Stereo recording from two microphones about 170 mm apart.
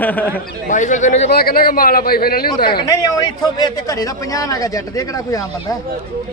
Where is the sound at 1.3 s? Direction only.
65° left (ahead or behind).